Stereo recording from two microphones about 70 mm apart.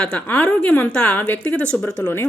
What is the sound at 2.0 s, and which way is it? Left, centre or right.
Speech, left.